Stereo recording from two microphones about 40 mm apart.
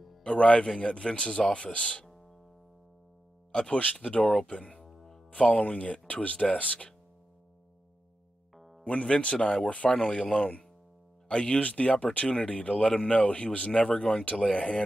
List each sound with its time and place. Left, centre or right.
0.2 s a man's voice: left
3.7 s a man's voice: left
4.8 s music: centre
5.3 s speech: left
8.8 s a man's voice: left
13.0 s a man's voice: left